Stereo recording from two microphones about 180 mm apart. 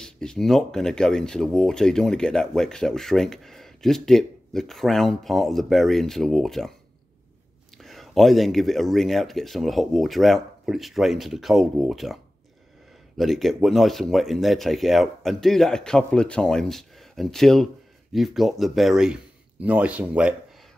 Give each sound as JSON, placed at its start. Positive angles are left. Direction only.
{"t": 0.0, "sound": "speech", "side_deg": 5}
{"t": 7.7, "sound": "speech", "side_deg": 0}
{"t": 13.2, "sound": "speech", "side_deg": 0}